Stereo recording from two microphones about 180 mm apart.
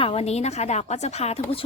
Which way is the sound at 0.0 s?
35° left (ahead or behind).